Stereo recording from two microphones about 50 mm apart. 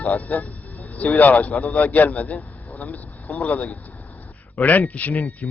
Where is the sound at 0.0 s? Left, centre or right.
Left.